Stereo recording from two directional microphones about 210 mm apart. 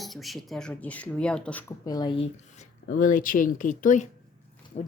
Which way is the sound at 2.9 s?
40° left (ahead or behind).